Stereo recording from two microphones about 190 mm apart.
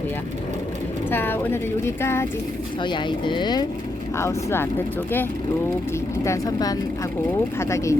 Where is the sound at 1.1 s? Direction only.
10° left (ahead or behind).